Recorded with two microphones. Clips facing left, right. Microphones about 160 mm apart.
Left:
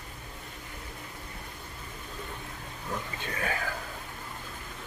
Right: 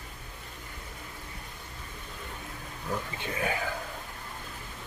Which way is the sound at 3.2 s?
15° right (ahead or behind).